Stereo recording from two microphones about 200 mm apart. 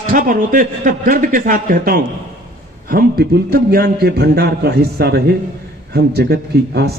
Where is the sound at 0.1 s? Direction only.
40° right (ahead or behind).